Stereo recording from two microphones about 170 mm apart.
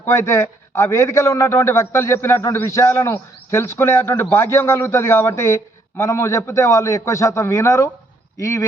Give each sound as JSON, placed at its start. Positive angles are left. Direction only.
{"t": 0.0, "sound": "a man's voice", "side_deg": 15}